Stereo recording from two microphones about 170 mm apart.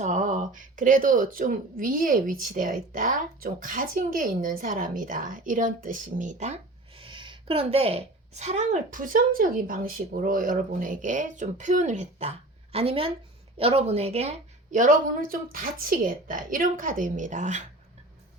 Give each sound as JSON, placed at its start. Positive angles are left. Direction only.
{"t": 0.0, "sound": "speech", "side_deg": -45}